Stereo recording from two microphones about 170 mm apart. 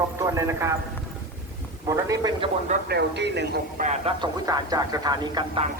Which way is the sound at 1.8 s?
20° right (ahead or behind).